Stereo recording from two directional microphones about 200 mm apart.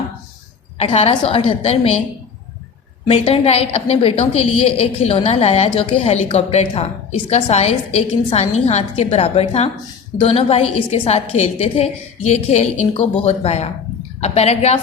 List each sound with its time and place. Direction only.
0.8 s a woman's voice: 30° left (ahead or behind)
3.1 s a woman's voice: 30° left (ahead or behind)